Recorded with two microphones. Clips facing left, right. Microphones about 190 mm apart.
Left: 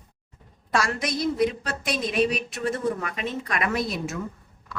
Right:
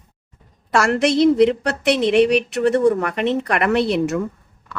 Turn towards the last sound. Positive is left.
turn(degrees=-70)  # may be behind; listen again after turning